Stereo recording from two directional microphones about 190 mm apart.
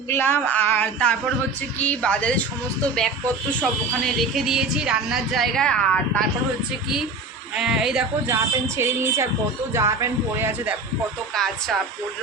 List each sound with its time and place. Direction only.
0.1 s a woman's voice: 10° left (ahead or behind)
3.6 s speech: centre (ahead or behind)
7.5 s speech: 5° right (ahead or behind)
8.6 s speech: 15° right (ahead or behind)
11.3 s speech: centre (ahead or behind)